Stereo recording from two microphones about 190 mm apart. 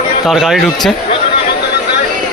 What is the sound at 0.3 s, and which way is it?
Speech, centre (ahead or behind).